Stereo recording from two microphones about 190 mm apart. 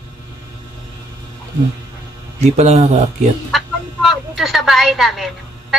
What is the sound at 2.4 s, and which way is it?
Speech, 35° right (ahead or behind).